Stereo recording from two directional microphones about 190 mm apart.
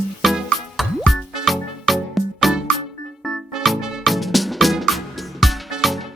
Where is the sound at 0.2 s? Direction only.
Centre (ahead or behind).